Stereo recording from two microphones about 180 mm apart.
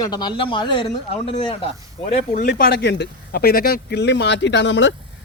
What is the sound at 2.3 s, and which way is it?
Speech, 55° left (ahead or behind).